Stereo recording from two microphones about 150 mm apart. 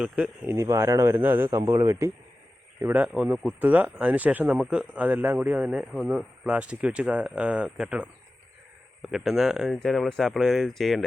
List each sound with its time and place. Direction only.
0.0 s a man's voice: 5° right (ahead or behind)
0.5 s speech: 20° right (ahead or behind)
1.5 s a man's voice: 25° right (ahead or behind); by 11.0 s centre (ahead or behind)